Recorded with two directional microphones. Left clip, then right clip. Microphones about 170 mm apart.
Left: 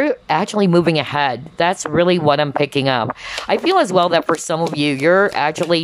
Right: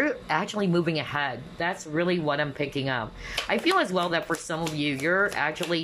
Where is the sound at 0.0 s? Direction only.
25° left (ahead or behind).